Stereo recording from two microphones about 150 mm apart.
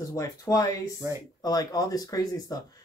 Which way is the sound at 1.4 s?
25° left (ahead or behind).